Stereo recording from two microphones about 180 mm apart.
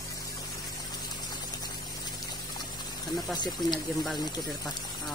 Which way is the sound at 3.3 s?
25° left (ahead or behind).